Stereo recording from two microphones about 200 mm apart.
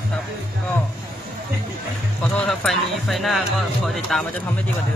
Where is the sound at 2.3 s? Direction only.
5° left (ahead or behind).